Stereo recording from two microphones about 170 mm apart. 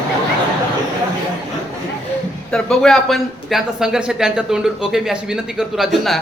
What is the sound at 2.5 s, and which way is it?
Speech, 5° left (ahead or behind).